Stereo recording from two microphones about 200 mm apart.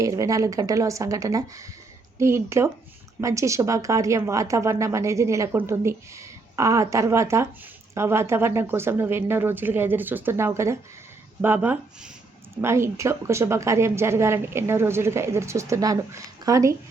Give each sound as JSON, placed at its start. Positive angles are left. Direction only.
{"t": 0.0, "sound": "speech", "side_deg": -15}